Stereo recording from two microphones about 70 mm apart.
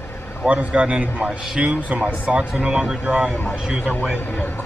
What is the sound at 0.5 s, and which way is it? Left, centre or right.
A man's voice, centre.